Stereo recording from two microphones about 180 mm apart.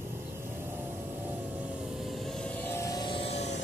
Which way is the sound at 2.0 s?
Centre (ahead or behind).